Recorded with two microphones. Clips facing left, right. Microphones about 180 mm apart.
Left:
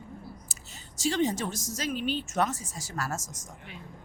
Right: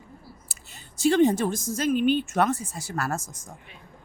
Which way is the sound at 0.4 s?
60° right (ahead or behind).